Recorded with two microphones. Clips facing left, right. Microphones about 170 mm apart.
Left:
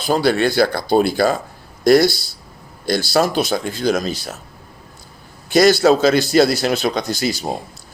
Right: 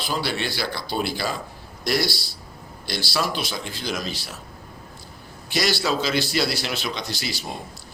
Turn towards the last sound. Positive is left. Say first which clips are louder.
# left 10 dB
turn(degrees=45)  # may be behind; listen again after turning